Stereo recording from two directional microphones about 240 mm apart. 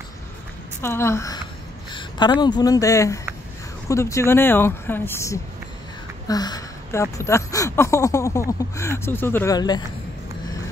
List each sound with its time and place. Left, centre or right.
0.8 s speech: centre